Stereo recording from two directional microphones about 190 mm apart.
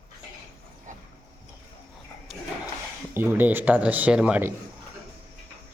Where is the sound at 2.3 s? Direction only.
Centre (ahead or behind).